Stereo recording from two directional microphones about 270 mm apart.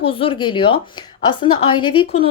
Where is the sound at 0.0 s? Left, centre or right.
Centre.